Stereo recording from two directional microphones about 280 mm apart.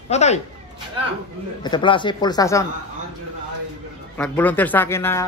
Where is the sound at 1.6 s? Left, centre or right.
Centre.